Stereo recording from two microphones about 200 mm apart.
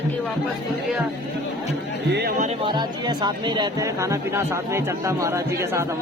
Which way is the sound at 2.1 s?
55° right (ahead or behind).